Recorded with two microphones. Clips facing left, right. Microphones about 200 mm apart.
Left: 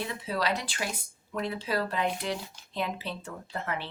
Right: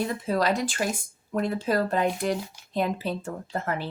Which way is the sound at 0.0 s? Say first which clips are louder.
Right 6 dB; 45° right (ahead or behind).